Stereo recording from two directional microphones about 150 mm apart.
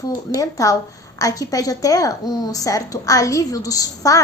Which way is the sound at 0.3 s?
20° left (ahead or behind).